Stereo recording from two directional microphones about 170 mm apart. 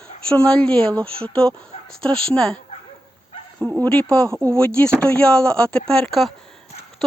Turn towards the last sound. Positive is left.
turn(degrees=0)  # may be behind; listen again after turning